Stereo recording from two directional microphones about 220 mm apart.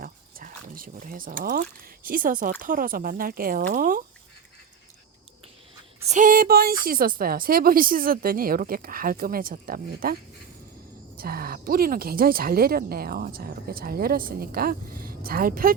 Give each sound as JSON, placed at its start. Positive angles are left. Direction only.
{"t": 0.0, "sound": "a sound", "side_deg": -40}
{"t": 2.0, "sound": "speech", "side_deg": -40}
{"t": 6.1, "sound": "speech", "side_deg": -35}
{"t": 11.2, "sound": "speech", "side_deg": -40}